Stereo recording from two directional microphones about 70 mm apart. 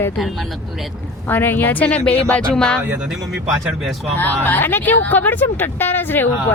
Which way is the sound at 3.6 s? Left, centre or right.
Centre.